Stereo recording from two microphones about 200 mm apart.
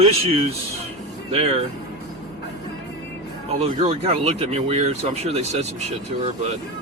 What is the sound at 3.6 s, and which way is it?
Speech, 30° right (ahead or behind).